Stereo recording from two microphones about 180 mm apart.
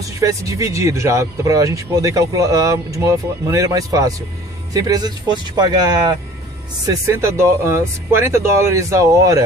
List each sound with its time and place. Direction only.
0.0 s speech: 20° right (ahead or behind)